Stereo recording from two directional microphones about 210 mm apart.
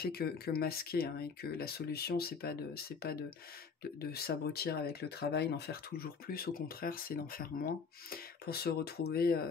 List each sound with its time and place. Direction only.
0.0 s speech: 45° left (ahead or behind)